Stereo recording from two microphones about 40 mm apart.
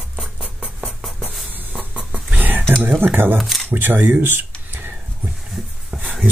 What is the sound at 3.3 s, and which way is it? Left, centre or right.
Speech, centre.